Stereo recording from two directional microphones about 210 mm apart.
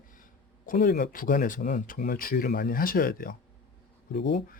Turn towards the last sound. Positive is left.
turn(degrees=50)  # may be behind; listen again after turning